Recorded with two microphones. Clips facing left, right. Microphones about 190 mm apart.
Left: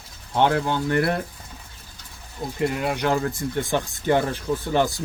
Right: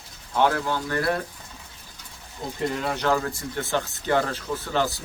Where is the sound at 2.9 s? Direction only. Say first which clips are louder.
Left 1 dB; 15° left (ahead or behind).